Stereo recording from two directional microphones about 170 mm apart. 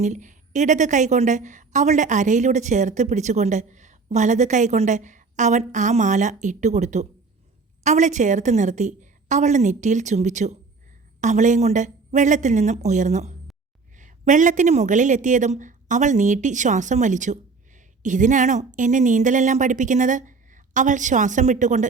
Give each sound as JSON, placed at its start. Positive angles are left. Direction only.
{"t": 0.0, "sound": "a woman's voice", "side_deg": -45}